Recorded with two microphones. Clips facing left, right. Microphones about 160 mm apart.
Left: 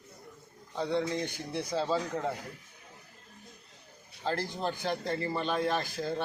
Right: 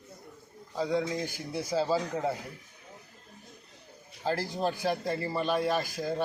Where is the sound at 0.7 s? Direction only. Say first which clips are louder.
Right 1 dB; 10° right (ahead or behind).